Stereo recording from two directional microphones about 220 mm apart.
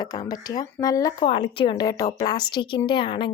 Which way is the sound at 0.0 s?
15° left (ahead or behind).